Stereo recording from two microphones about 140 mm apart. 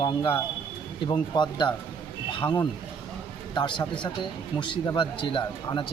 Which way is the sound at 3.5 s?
30° left (ahead or behind).